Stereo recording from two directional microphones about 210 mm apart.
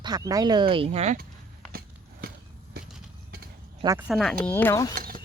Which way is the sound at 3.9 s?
5° right (ahead or behind).